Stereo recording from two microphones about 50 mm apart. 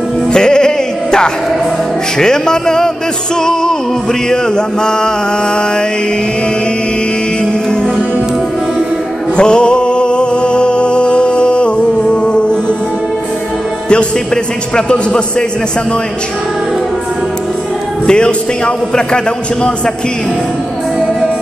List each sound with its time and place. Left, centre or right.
0.3 s music: centre
2.1 s mantra: centre
4.3 s mantra: centre
9.4 s music: centre
13.8 s music: centre
18.0 s speech: centre
18.9 s mantra: centre